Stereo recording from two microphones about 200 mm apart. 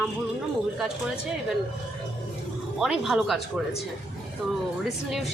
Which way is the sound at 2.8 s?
5° right (ahead or behind).